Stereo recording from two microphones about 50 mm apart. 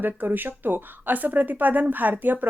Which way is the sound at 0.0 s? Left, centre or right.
Right.